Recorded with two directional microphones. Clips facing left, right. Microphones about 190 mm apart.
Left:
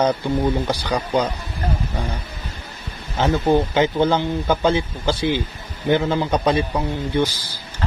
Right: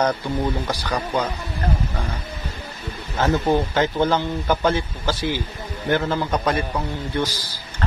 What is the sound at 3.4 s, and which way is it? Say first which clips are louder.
Speech: left 3 dB; 15° left (ahead or behind).